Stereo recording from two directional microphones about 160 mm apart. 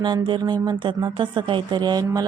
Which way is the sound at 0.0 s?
30° right (ahead or behind).